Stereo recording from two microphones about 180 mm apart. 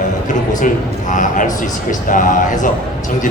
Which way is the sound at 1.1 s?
45° left (ahead or behind).